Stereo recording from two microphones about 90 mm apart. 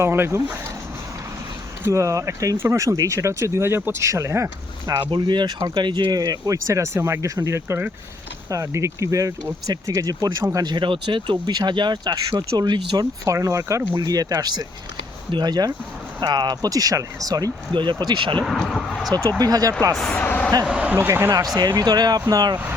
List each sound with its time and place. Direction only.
0.0 s speech: 30° right (ahead or behind)
1.8 s speech: 35° right (ahead or behind)
4.9 s speech: 55° right (ahead or behind)
10.6 s speech: 55° right (ahead or behind)
13.2 s speech: 35° right (ahead or behind)
13.9 s speech: 45° right (ahead or behind)
17.7 s speech: 55° right (ahead or behind)
18.4 s speech: 5° left (ahead or behind)
19.4 s speech: 45° right (ahead or behind)
20.0 s speech: 5° left (ahead or behind)
20.2 s a sound: 20° left (ahead or behind)
20.7 s speech: 10° right (ahead or behind)
20.9 s speech: 25° right (ahead or behind)
21.3 s speech: 45° right (ahead or behind)